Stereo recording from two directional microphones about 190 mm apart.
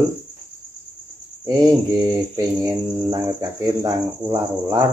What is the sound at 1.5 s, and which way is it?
Mantra, 20° right (ahead or behind).